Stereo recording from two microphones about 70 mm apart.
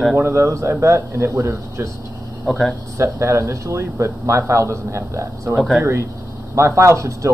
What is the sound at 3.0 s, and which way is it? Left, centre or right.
A man's voice, right.